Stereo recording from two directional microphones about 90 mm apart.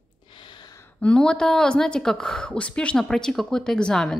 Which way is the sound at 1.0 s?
10° left (ahead or behind).